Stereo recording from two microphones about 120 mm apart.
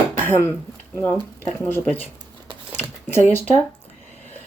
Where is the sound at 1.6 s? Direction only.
10° left (ahead or behind).